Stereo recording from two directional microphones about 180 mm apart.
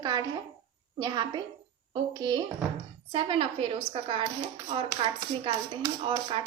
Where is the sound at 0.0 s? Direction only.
25° right (ahead or behind).